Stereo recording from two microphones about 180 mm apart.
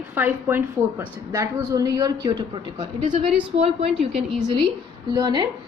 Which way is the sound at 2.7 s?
35° right (ahead or behind).